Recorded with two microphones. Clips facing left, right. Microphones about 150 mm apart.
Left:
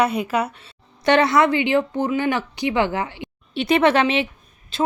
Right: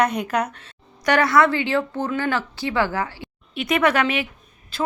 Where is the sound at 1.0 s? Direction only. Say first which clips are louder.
Left 1 dB; 25° left (ahead or behind).